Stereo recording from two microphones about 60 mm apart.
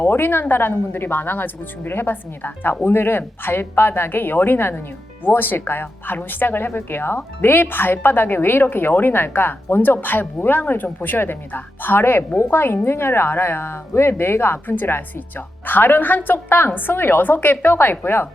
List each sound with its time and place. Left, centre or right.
0.0 s a woman's voice: left